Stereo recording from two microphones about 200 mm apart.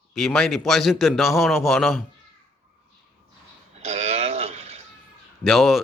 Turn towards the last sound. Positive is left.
turn(degrees=0)  # may be behind; listen again after turning